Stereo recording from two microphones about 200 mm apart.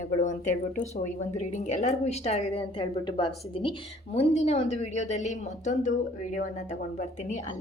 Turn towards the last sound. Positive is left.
turn(degrees=35)  # may be behind; listen again after turning